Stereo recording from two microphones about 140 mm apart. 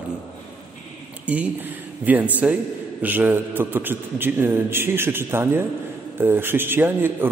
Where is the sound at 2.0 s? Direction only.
10° right (ahead or behind).